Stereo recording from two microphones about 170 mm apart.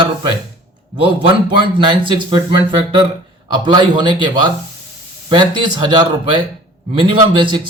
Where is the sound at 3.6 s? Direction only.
25° right (ahead or behind).